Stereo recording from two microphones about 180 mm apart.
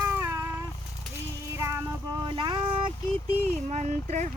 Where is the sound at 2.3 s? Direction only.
25° right (ahead or behind).